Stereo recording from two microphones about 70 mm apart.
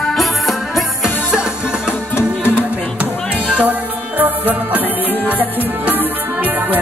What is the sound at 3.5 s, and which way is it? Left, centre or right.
Music, right.